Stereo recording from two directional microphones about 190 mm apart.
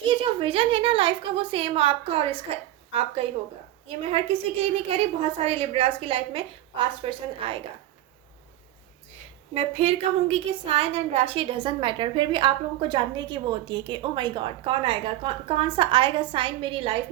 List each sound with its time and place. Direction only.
0.0 s a woman's voice: 25° right (ahead or behind)
9.1 s a woman's voice: 30° right (ahead or behind)